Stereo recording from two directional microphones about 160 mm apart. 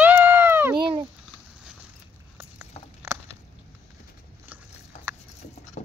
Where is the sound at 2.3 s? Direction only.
15° right (ahead or behind).